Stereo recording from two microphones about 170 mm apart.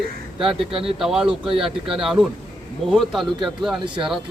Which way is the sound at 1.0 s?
Centre (ahead or behind).